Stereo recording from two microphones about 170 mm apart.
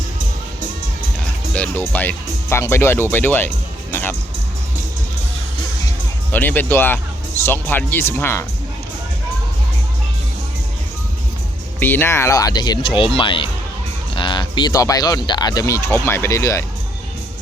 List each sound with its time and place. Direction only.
1.5 s speech: 10° left (ahead or behind)
6.3 s speech: 10° left (ahead or behind)
11.8 s speech: 10° left (ahead or behind)